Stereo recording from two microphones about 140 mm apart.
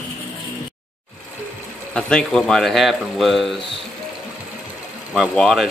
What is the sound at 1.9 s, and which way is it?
Speech, 5° left (ahead or behind).